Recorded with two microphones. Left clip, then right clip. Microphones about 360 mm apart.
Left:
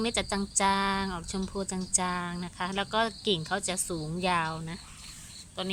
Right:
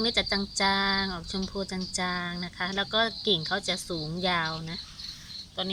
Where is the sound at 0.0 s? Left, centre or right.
Centre.